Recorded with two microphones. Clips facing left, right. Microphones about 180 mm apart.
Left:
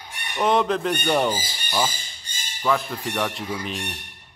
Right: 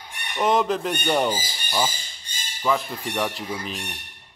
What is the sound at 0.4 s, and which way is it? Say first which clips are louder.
Speech: left 1 dB; centre (ahead or behind).